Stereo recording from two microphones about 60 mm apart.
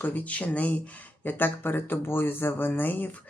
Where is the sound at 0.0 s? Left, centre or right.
Left.